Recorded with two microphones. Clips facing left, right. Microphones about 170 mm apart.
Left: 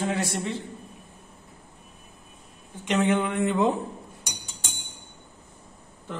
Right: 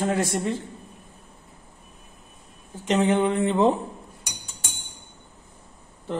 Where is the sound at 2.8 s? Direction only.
35° right (ahead or behind).